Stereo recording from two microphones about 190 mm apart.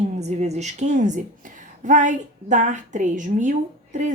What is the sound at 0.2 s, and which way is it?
A woman's voice, 35° right (ahead or behind).